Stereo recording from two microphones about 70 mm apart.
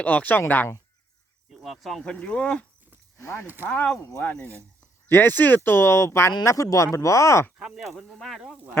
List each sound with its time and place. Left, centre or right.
0.0 s speech: left
1.5 s speech: centre
4.2 s speech: left
6.4 s speech: left
7.6 s speech: centre